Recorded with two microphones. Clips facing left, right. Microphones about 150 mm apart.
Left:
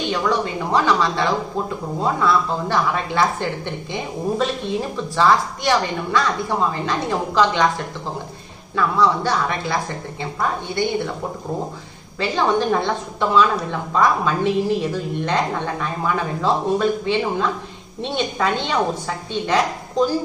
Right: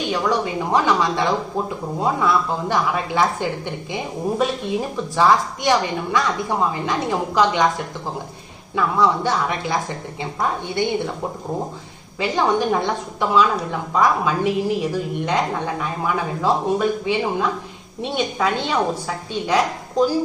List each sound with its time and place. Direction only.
0.1 s a woman's voice: 15° right (ahead or behind)
8.7 s a woman's voice: 20° right (ahead or behind)
12.2 s a woman's voice: 15° right (ahead or behind)